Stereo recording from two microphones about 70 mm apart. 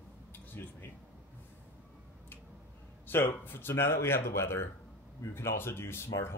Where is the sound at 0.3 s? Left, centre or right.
Left.